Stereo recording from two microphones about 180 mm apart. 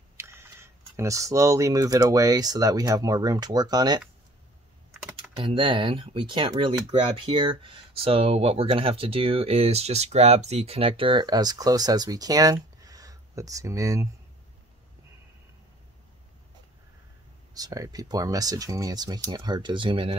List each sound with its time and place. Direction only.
0.2 s speech: 15° right (ahead or behind)
5.4 s speech: 30° right (ahead or behind)
17.6 s speech: 20° right (ahead or behind)